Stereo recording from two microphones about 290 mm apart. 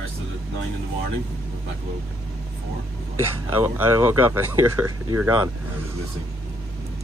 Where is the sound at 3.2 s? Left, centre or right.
Centre.